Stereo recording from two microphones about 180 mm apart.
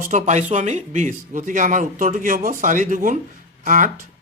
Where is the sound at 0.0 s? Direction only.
40° right (ahead or behind).